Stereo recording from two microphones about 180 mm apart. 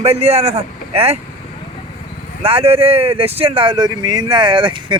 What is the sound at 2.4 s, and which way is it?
Speech, 30° right (ahead or behind).